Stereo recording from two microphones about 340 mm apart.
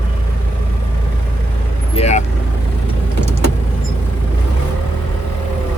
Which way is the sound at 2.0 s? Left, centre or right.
Centre.